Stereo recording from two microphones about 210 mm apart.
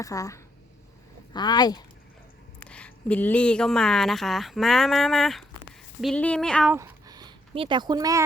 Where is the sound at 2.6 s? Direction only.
5° left (ahead or behind).